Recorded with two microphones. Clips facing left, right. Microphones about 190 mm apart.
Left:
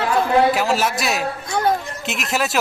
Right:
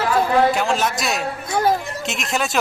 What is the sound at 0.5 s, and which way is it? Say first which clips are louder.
A man's voice: left 1 dB; 5° left (ahead or behind).